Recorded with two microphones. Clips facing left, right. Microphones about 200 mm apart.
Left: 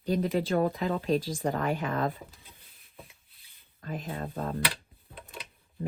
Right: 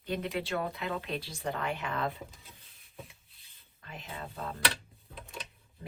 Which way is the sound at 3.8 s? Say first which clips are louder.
Left 8 dB; 50° left (ahead or behind).